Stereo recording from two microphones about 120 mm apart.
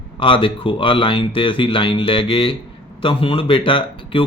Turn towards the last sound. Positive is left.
turn(degrees=45)  # may be behind; listen again after turning